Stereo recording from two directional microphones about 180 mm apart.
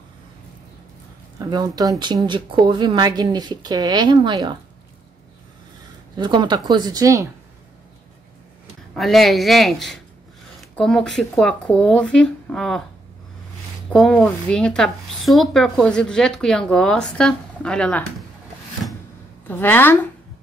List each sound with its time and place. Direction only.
1.4 s speech: 20° right (ahead or behind)
6.1 s speech: 25° right (ahead or behind)
8.9 s speech: centre (ahead or behind)
13.9 s speech: 5° left (ahead or behind)
19.4 s a woman's voice: 10° left (ahead or behind)